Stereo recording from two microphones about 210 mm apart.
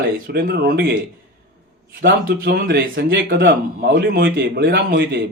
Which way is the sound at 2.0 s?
50° right (ahead or behind).